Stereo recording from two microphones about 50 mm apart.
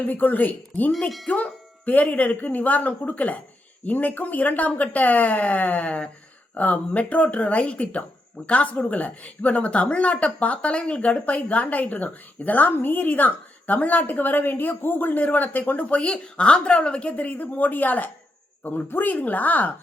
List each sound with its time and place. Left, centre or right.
0.0 s a woman's voice: left
0.9 s a woman's voice: centre; by 19.7 s left